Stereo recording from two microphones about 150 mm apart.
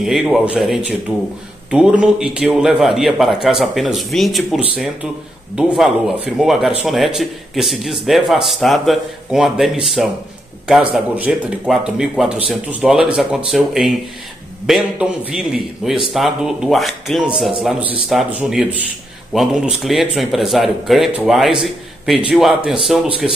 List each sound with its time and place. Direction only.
0.0 s a man's voice: 5° right (ahead or behind)